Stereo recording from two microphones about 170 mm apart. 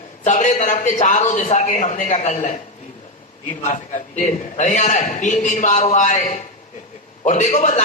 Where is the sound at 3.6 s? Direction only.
45° left (ahead or behind).